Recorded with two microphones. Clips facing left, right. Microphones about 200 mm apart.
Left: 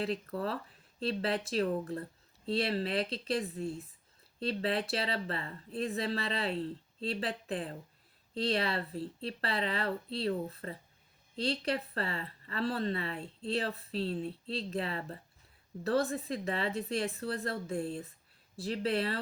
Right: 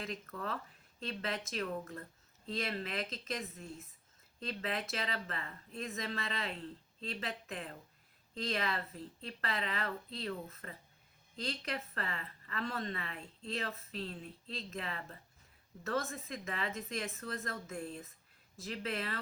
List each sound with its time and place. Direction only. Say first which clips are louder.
0.0 s speech: left 8 dB; 35° left (ahead or behind)